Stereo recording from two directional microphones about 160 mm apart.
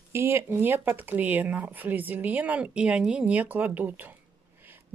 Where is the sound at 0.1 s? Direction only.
15° right (ahead or behind).